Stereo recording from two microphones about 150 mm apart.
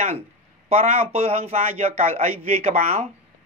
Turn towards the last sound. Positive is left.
turn(degrees=-45)  # may be behind; listen again after turning